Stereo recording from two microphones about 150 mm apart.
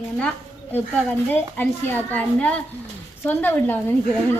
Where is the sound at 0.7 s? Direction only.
10° left (ahead or behind).